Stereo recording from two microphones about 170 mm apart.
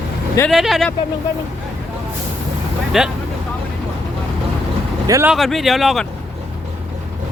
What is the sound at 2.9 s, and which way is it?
Speech, centre (ahead or behind).